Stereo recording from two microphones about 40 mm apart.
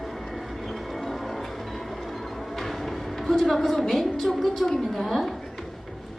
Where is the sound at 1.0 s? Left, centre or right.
Centre.